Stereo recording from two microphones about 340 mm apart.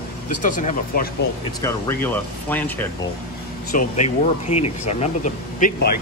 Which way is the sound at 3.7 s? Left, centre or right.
Left.